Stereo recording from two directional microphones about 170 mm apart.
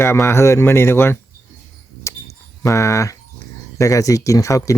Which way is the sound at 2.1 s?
15° left (ahead or behind).